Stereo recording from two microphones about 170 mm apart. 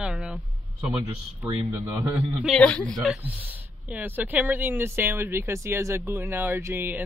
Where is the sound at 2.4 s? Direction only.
5° left (ahead or behind).